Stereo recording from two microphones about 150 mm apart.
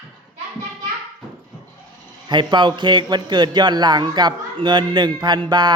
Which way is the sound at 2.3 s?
30° right (ahead or behind).